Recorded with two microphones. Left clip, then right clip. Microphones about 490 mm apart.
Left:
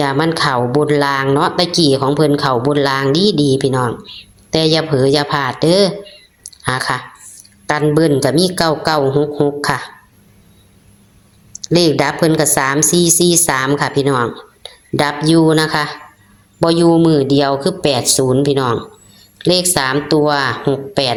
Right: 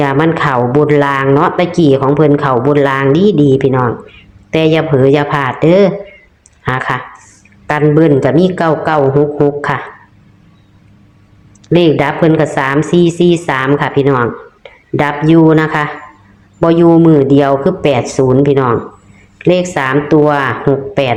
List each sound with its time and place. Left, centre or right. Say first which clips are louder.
0.0 s a woman's voice: right 3 dB; left
11.6 s a woman's voice: right 3 dB; left